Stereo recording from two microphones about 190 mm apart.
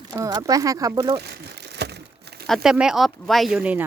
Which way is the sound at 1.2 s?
55° right (ahead or behind).